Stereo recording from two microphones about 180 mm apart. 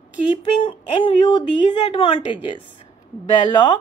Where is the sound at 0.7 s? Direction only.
25° left (ahead or behind).